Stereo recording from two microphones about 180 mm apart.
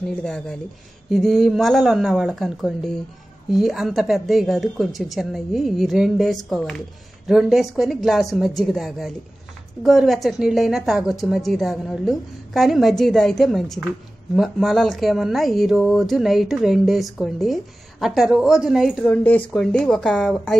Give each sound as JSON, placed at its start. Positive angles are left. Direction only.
{"t": 0.2, "sound": "speech", "side_deg": 5}